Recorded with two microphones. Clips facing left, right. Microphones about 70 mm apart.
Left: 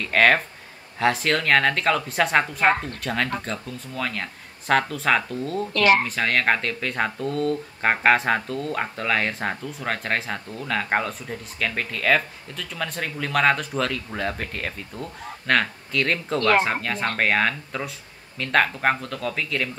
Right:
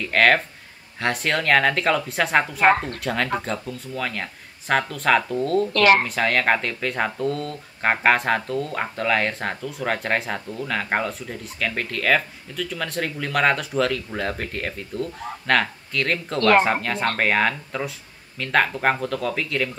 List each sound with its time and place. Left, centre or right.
0.0 s speech: centre
5.7 s speech: right
6.0 s speech: centre